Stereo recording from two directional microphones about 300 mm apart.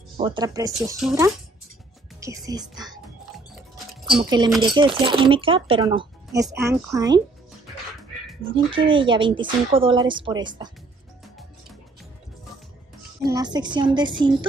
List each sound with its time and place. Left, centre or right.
0.2 s speech: centre
2.1 s music: centre
4.1 s speech: centre
8.7 s speech: centre
13.2 s speech: centre